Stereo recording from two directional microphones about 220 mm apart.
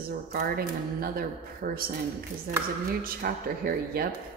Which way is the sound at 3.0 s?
40° right (ahead or behind).